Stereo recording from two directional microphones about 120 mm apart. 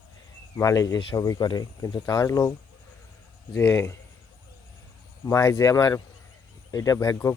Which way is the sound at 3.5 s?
20° left (ahead or behind).